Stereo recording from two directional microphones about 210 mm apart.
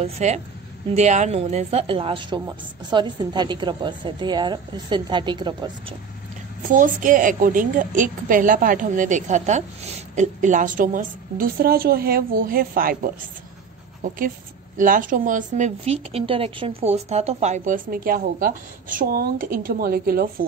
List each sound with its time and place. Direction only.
0.0 s a woman's voice: 30° right (ahead or behind)
6.7 s a woman's voice: 40° right (ahead or behind)